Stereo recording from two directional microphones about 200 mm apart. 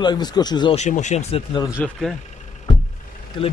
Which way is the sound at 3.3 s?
25° left (ahead or behind).